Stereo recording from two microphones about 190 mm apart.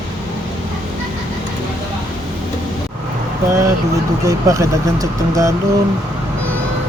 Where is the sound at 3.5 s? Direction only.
15° right (ahead or behind).